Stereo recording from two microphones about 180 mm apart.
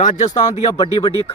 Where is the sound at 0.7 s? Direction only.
20° left (ahead or behind).